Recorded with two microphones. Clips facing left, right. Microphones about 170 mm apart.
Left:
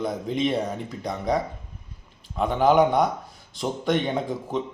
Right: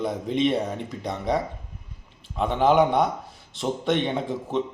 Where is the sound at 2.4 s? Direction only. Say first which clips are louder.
Left 1 dB; 30° right (ahead or behind).